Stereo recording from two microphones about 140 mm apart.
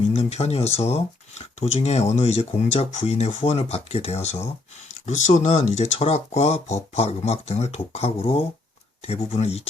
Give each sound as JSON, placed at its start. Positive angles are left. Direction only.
{"t": 0.0, "sound": "speech", "side_deg": 50}